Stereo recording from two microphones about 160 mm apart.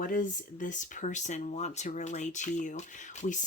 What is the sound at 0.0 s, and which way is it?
Speech, 55° left (ahead or behind).